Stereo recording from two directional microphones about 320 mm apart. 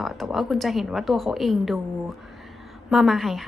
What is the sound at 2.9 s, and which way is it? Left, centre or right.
Speech, centre.